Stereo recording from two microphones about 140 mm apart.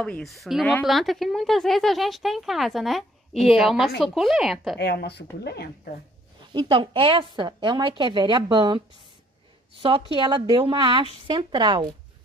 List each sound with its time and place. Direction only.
0.0 s speech: 5° left (ahead or behind)
6.5 s a woman's voice: 35° right (ahead or behind)